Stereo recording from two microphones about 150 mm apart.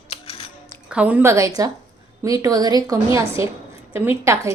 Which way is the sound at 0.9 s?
10° right (ahead or behind).